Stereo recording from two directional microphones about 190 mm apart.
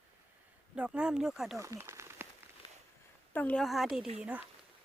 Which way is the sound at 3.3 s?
5° left (ahead or behind).